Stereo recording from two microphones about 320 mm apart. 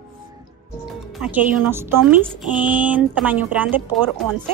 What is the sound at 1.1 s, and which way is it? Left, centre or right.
Speech, centre.